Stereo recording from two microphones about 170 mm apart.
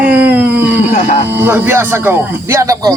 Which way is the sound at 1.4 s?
15° right (ahead or behind).